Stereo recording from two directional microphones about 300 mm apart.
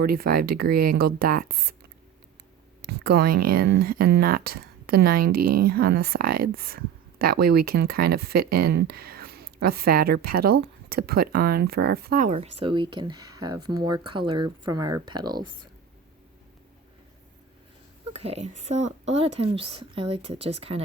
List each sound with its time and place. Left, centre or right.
0.0 s speech: right
2.8 s a woman's voice: right
8.9 s a sound: right
9.6 s a woman's voice: right; by 15.4 s centre
18.1 s a woman's voice: right